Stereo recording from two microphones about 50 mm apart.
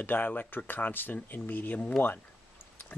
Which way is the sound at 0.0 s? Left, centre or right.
Left.